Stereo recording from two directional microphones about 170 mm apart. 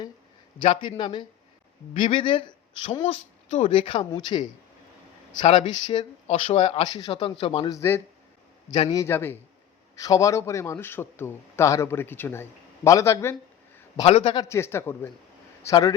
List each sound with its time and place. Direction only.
0.7 s a man's voice: 30° left (ahead or behind)
6.2 s speech: 35° left (ahead or behind)
6.8 s a man's voice: 25° left (ahead or behind)
14.0 s speech: 40° left (ahead or behind)
14.3 s a man's voice: 15° left (ahead or behind)